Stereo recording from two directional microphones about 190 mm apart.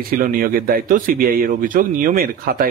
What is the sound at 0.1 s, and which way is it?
A man's voice, 50° right (ahead or behind).